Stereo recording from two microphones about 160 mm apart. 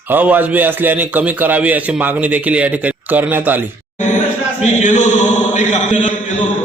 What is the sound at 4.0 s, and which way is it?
A man's voice, 50° left (ahead or behind).